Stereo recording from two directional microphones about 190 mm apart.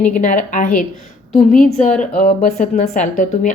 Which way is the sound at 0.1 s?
45° left (ahead or behind).